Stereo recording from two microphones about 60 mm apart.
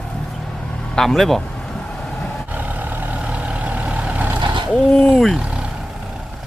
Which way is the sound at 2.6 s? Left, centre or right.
Right.